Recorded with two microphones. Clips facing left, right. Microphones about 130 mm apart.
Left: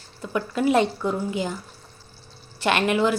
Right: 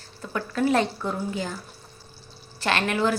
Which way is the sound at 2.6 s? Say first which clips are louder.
Left 3 dB; 15° left (ahead or behind).